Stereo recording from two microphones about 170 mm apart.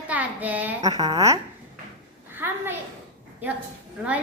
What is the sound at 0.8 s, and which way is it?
Speech, 20° right (ahead or behind).